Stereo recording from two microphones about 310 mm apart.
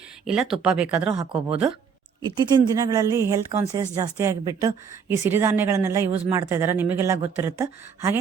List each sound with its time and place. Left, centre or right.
0.3 s speech: centre
1.3 s speech: centre